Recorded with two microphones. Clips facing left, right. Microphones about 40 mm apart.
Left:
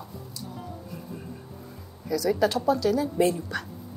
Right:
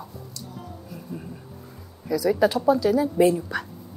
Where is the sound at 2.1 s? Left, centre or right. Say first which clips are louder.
Right 3 dB; centre.